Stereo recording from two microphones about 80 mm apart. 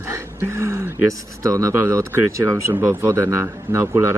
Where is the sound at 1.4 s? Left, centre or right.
Right.